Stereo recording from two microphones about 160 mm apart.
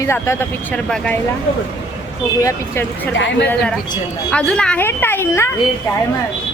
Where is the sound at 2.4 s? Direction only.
15° left (ahead or behind).